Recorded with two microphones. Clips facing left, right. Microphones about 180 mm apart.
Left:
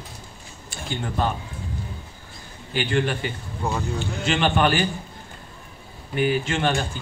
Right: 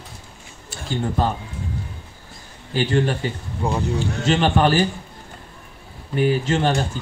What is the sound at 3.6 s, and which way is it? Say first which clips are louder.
Speech: right 3 dB; 15° right (ahead or behind).